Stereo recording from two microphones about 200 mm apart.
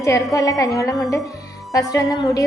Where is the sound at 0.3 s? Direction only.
15° left (ahead or behind).